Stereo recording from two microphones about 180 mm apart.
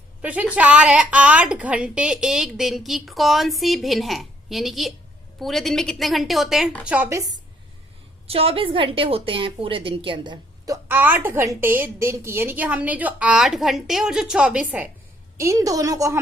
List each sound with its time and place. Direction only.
0.2 s a woman's voice: 10° right (ahead or behind)
8.3 s a woman's voice: 30° right (ahead or behind)
10.8 s a woman's voice: 10° right (ahead or behind)